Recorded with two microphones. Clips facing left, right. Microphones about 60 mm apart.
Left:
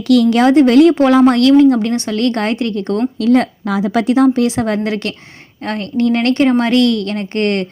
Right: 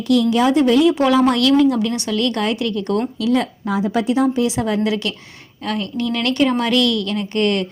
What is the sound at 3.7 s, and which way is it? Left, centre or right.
A woman's voice, left.